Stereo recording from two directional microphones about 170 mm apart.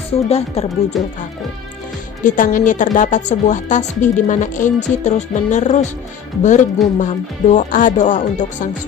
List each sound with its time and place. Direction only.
0.3 s speech: 40° left (ahead or behind)
2.2 s a woman's voice: 50° left (ahead or behind)